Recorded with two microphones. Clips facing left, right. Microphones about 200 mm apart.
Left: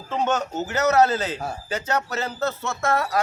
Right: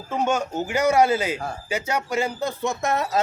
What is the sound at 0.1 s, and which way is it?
A man's voice, 10° right (ahead or behind).